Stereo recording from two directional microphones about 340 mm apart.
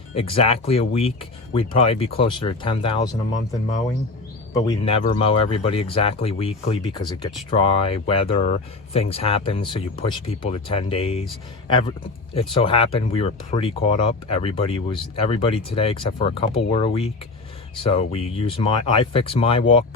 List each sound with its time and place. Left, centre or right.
0.1 s speech: centre
4.5 s speech: centre